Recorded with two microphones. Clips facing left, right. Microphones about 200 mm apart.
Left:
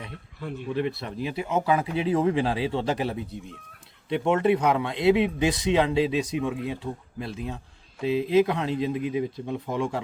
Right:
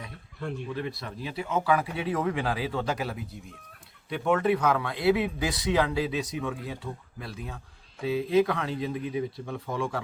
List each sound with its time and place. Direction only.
0.3 s speech: centre (ahead or behind)
0.7 s speech: 25° left (ahead or behind)